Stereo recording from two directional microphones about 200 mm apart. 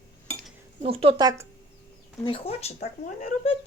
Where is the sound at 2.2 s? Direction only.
30° left (ahead or behind).